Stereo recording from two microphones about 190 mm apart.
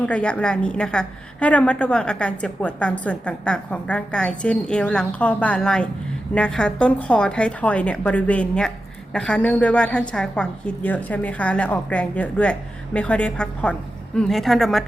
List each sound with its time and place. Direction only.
0.0 s a woman's voice: 5° left (ahead or behind)